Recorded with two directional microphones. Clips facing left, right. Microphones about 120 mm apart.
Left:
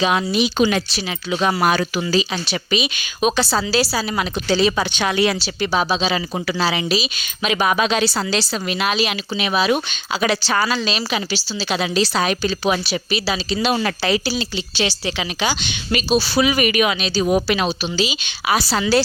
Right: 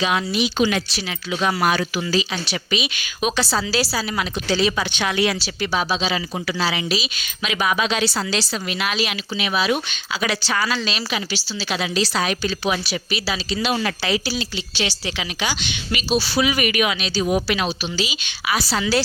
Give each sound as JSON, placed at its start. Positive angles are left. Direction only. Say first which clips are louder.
{"t": 0.0, "sound": "a woman's voice", "louder": "left 3 dB", "side_deg": 25}
{"t": 7.4, "sound": "a woman's voice", "louder": "left 3 dB", "side_deg": 40}
{"t": 8.0, "sound": "a woman's voice", "louder": "left 2 dB", "side_deg": 30}
{"t": 10.7, "sound": "a woman's voice", "louder": "left 3 dB", "side_deg": 25}
{"t": 12.3, "sound": "a woman's voice", "louder": "left 3 dB", "side_deg": 40}
{"t": 12.8, "sound": "a woman's voice", "louder": "left 3 dB", "side_deg": 25}
{"t": 13.6, "sound": "a woman's voice", "louder": "left 2 dB", "side_deg": 40}